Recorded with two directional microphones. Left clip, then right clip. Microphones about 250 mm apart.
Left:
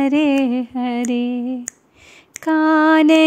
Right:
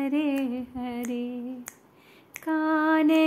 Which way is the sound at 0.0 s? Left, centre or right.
Left.